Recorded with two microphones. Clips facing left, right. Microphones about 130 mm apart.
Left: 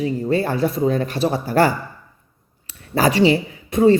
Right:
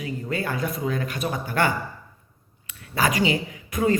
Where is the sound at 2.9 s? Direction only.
30° left (ahead or behind).